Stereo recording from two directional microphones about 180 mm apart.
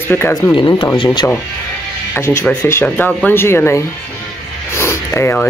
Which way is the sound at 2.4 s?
15° left (ahead or behind).